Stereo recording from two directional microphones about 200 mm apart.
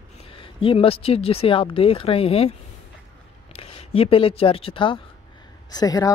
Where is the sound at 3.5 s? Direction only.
30° left (ahead or behind).